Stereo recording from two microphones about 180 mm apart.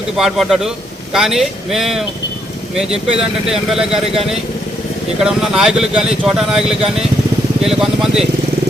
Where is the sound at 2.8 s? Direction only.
35° right (ahead or behind).